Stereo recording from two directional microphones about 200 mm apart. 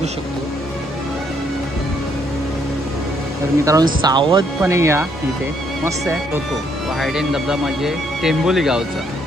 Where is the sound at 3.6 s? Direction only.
15° right (ahead or behind).